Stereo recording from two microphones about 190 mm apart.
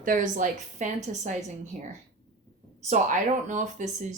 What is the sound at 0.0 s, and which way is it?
Speech, 45° right (ahead or behind).